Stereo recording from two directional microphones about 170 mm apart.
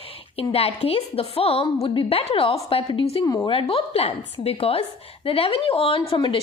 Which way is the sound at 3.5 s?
30° left (ahead or behind).